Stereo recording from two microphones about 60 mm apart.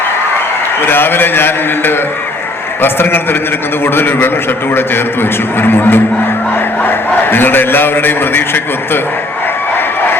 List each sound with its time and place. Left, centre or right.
0.8 s a man's voice: left
5.5 s a man's voice: left